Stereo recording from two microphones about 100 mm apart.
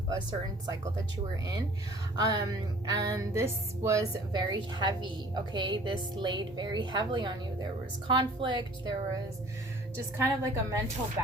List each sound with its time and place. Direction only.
0.1 s music: 40° right (ahead or behind)
2.1 s music: 40° right (ahead or behind)
4.3 s a woman's voice: 50° right (ahead or behind)
10.2 s a woman's voice: 25° right (ahead or behind)